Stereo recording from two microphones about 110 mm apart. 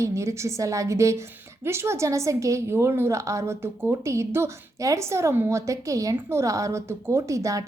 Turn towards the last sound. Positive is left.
turn(degrees=-30)  # may be behind; listen again after turning